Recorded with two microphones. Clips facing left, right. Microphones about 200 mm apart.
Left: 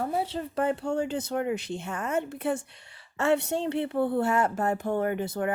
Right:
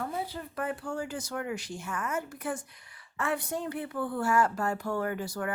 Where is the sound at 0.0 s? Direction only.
35° left (ahead or behind).